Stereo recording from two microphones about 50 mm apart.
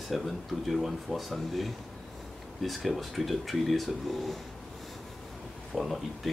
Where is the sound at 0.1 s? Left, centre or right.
Centre.